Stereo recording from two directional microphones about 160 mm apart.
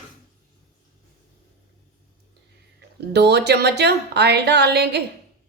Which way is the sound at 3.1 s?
90° right.